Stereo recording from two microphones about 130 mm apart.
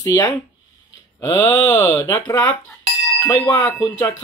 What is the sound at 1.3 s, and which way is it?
Speech, 15° left (ahead or behind).